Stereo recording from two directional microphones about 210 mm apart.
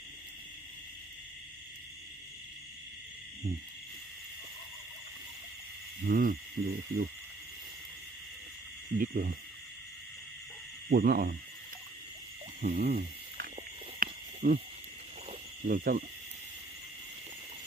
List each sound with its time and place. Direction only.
6.1 s hoot: 40° right (ahead or behind)
9.0 s speech: 45° right (ahead or behind)
10.8 s speech: 50° right (ahead or behind)
12.6 s speech: 45° right (ahead or behind)
14.0 s a sound: 40° right (ahead or behind)
15.6 s speech: 45° right (ahead or behind)